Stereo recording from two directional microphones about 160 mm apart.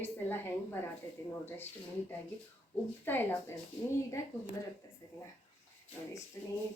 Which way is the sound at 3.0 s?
10° left (ahead or behind).